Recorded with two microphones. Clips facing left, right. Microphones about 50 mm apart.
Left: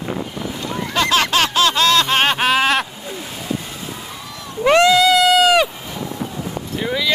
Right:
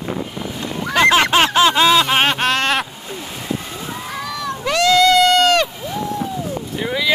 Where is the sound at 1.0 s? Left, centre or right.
Right.